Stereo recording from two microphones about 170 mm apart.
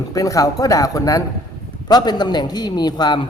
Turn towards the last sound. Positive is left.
turn(degrees=25)  # may be behind; listen again after turning